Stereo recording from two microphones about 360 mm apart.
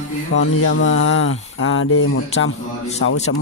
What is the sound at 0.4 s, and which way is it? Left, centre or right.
Speech, left.